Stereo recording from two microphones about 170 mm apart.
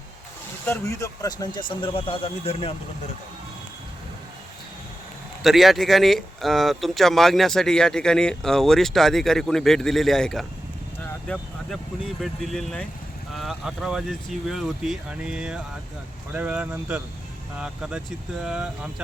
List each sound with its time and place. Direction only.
0.6 s speech: 15° left (ahead or behind); by 2.7 s 35° left (ahead or behind)
5.4 s speech: centre (ahead or behind)
12.2 s speech: centre (ahead or behind)